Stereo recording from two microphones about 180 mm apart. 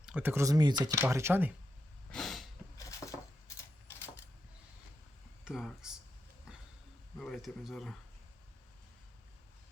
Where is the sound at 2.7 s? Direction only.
15° left (ahead or behind).